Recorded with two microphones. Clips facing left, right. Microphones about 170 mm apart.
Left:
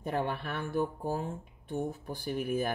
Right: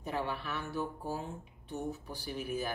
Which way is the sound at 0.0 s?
55° left (ahead or behind).